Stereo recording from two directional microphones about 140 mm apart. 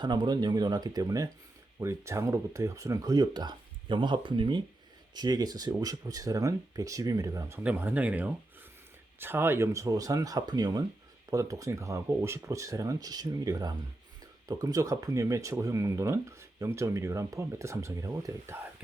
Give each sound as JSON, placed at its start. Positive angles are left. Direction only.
{"t": 0.0, "sound": "speech", "side_deg": -30}
{"t": 7.6, "sound": "speech", "side_deg": -10}